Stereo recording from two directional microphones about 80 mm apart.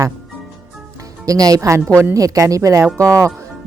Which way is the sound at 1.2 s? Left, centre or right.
Right.